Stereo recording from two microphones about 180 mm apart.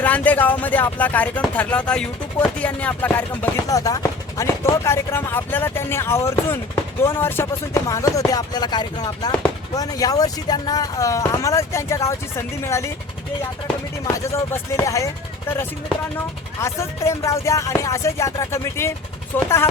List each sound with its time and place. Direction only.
0.0 s speech: 10° left (ahead or behind)
14.3 s speech: 15° left (ahead or behind)